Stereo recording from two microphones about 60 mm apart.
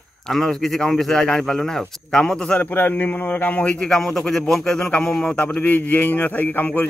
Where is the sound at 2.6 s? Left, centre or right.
Left.